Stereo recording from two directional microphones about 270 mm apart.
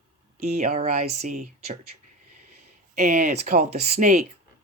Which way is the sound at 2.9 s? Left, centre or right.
Right.